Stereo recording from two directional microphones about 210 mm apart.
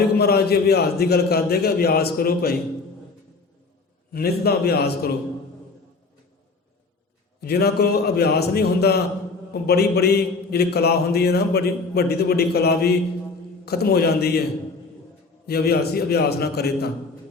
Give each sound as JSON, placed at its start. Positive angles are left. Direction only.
{"t": 0.2, "sound": "a man's voice", "side_deg": 50}
{"t": 4.1, "sound": "a man's voice", "side_deg": 45}
{"t": 7.4, "sound": "a man's voice", "side_deg": 50}
{"t": 15.4, "sound": "a man's voice", "side_deg": 50}